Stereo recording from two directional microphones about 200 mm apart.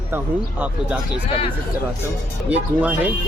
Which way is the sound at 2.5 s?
5° right (ahead or behind).